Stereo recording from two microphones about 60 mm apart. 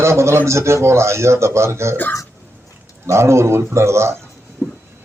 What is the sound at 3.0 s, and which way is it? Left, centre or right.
A man's voice, right.